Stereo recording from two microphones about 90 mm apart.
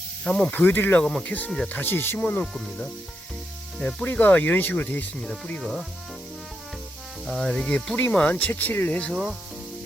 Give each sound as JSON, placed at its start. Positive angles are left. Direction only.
{"t": 0.3, "sound": "snake", "side_deg": 10}
{"t": 0.6, "sound": "speech", "side_deg": 20}
{"t": 1.0, "sound": "snake", "side_deg": 10}
{"t": 1.5, "sound": "snake", "side_deg": 5}
{"t": 1.7, "sound": "speech", "side_deg": 25}
{"t": 2.4, "sound": "speech", "side_deg": 5}
{"t": 3.8, "sound": "speech", "side_deg": 15}
{"t": 7.3, "sound": "snake", "side_deg": 5}
{"t": 8.1, "sound": "speech", "side_deg": 15}